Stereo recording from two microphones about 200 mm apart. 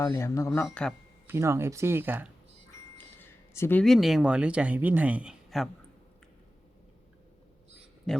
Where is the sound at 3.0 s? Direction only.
10° left (ahead or behind).